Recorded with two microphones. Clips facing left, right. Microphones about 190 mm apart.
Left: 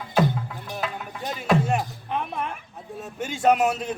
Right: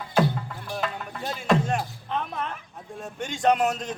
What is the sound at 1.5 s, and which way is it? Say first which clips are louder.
Speech: left 1 dB; 10° left (ahead or behind).